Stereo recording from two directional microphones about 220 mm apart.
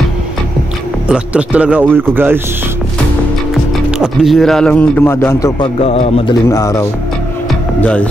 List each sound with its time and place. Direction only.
1.0 s speech: 5° right (ahead or behind)
4.0 s speech: centre (ahead or behind)
5.8 s speech: 25° left (ahead or behind)
6.5 s speech: 15° left (ahead or behind)